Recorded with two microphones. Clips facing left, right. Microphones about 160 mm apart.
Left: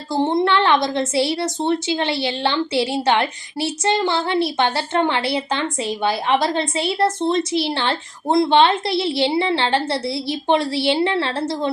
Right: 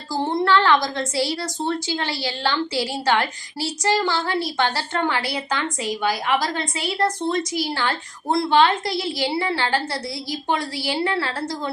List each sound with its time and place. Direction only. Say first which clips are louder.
0.1 s a woman's voice: left 2 dB; 20° left (ahead or behind)